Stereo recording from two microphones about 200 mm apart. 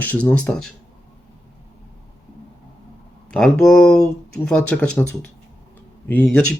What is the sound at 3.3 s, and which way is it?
Speech, centre (ahead or behind).